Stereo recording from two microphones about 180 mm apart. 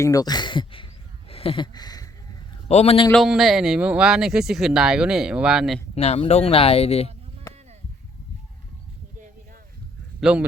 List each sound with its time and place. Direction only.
0.0 s speech: 20° left (ahead or behind)
1.3 s a sound: 30° left (ahead or behind)
2.6 s speech: 35° left (ahead or behind)
3.1 s speech: centre (ahead or behind)
5.9 s speech: 35° left (ahead or behind)
10.2 s speech: 5° right (ahead or behind)